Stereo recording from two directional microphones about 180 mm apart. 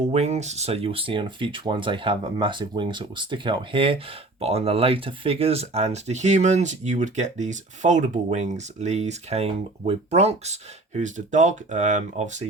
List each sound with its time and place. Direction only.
0.1 s speech: 40° right (ahead or behind)